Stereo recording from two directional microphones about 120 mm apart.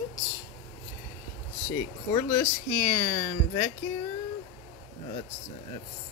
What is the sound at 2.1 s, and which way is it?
Speech, 30° left (ahead or behind).